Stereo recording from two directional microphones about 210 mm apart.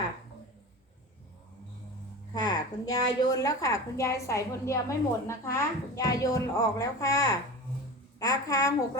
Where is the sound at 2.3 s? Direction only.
20° left (ahead or behind).